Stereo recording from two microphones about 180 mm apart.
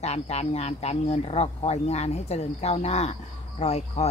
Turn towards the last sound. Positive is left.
turn(degrees=35)  # may be behind; listen again after turning